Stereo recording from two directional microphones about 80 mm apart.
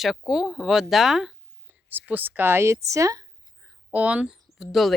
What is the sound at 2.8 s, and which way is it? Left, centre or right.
Speech, right.